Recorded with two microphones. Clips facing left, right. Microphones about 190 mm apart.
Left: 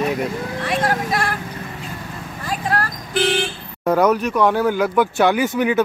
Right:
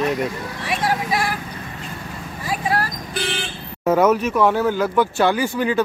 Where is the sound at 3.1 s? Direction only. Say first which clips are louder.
Left 8 dB; 50° left (ahead or behind).